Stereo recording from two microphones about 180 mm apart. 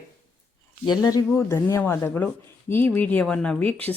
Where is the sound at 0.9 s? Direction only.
20° left (ahead or behind).